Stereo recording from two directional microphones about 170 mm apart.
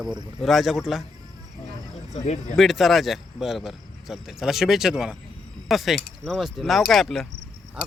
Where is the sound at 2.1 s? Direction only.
40° left (ahead or behind).